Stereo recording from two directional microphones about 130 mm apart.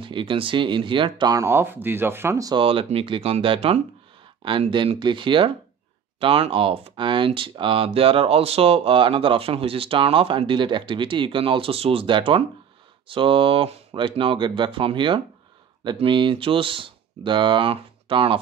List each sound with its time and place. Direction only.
0.0 s speech: 40° right (ahead or behind); by 2.5 s 20° right (ahead or behind)
2.5 s speech: 45° right (ahead or behind)